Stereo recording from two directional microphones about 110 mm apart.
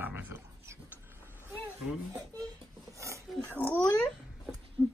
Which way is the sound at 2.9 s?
25° right (ahead or behind).